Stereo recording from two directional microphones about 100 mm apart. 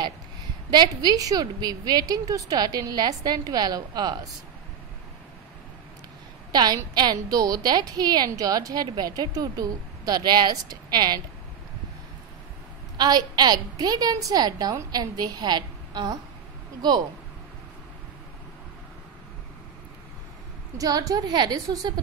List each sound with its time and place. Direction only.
1.0 s a woman's voice: 35° right (ahead or behind)
6.5 s a woman's voice: 45° right (ahead or behind)
12.9 s a woman's voice: 45° right (ahead or behind)
20.7 s a woman's voice: 35° right (ahead or behind)